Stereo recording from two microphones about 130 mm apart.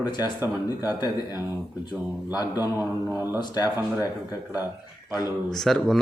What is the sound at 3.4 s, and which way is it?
Speech, 30° left (ahead or behind).